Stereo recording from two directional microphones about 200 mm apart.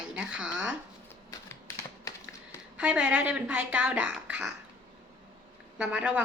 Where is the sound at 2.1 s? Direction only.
20° left (ahead or behind).